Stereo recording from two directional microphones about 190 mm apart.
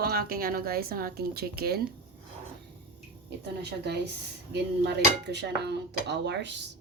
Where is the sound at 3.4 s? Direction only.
60° right (ahead or behind).